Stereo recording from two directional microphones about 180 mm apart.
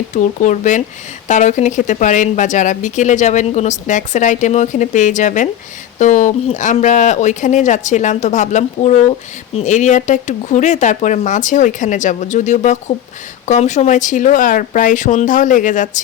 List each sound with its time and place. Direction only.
0.1 s speech: 45° left (ahead or behind)